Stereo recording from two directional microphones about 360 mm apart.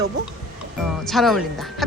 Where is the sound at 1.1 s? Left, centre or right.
Centre.